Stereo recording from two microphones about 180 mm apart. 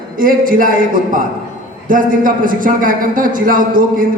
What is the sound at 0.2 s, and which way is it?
A man's voice, 50° right (ahead or behind).